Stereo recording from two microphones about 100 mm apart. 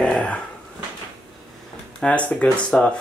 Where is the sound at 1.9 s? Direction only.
10° left (ahead or behind).